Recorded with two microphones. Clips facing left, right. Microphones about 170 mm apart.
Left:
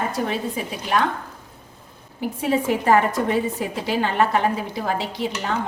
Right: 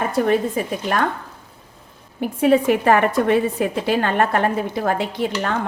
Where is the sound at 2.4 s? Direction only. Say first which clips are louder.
Right 6 dB; 65° right (ahead or behind).